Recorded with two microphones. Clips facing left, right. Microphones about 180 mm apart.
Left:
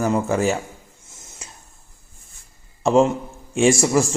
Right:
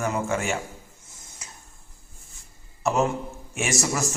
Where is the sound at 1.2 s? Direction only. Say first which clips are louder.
Left 5 dB; 25° left (ahead or behind).